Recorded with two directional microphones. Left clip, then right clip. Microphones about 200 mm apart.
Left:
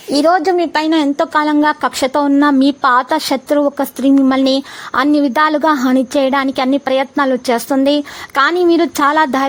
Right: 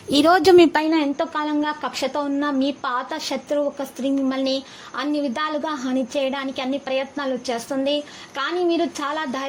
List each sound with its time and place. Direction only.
0.1 s a woman's voice: centre (ahead or behind)
0.3 s a woman's voice: 35° right (ahead or behind)
0.9 s a woman's voice: 30° left (ahead or behind)